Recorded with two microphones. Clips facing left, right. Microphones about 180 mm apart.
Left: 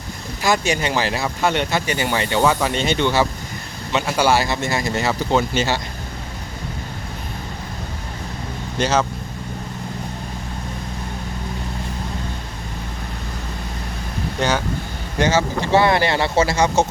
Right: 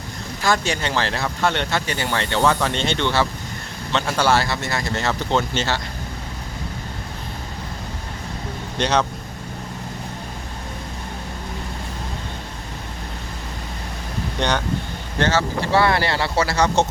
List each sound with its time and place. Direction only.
0.4 s speech: 10° left (ahead or behind)
8.8 s speech: 5° left (ahead or behind)
14.3 s speech: 5° left (ahead or behind)